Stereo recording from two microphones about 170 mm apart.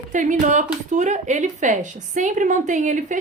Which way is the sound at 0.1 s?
45° right (ahead or behind).